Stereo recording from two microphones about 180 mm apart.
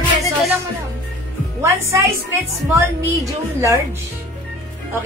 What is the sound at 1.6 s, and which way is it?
A woman's voice, 15° right (ahead or behind).